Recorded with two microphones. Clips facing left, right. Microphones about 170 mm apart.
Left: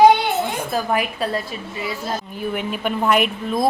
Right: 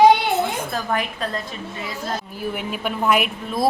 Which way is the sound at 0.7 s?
10° left (ahead or behind).